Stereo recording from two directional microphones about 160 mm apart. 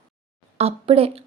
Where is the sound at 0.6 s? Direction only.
40° right (ahead or behind).